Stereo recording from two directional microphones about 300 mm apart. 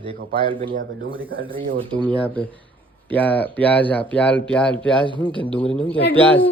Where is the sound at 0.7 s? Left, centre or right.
Right.